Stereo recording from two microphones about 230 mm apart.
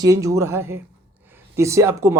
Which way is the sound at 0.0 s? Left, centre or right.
Centre.